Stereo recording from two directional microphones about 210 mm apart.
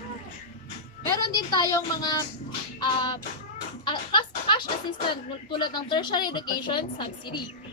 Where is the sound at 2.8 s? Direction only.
20° left (ahead or behind).